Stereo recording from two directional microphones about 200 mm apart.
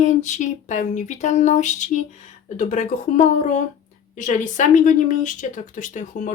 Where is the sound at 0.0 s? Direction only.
40° left (ahead or behind).